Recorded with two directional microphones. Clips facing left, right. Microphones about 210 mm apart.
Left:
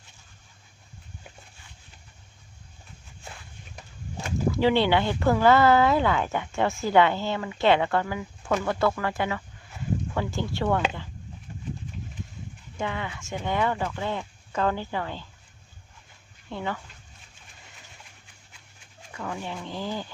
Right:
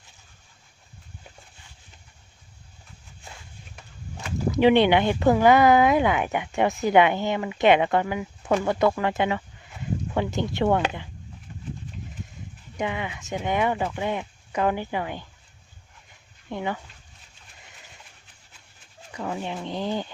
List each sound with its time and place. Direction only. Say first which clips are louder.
4.5 s speech: right 5 dB; 20° right (ahead or behind)
12.7 s speech: right 2 dB; 15° right (ahead or behind)
16.5 s speech: right 2 dB; 15° right (ahead or behind)
19.1 s speech: right 3 dB; 20° right (ahead or behind)